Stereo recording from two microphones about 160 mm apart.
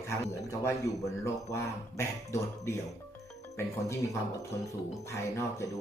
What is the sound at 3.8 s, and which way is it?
Speech, 20° left (ahead or behind).